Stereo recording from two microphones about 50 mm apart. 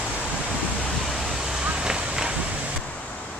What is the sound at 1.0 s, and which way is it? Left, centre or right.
Vehicle, centre.